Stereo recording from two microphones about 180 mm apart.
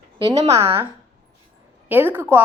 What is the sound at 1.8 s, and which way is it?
Speech, 10° right (ahead or behind).